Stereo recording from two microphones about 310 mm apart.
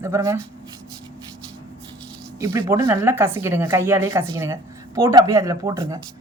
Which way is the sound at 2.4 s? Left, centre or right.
Centre.